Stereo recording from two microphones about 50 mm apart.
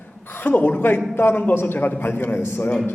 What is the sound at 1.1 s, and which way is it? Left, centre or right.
A man's voice, left.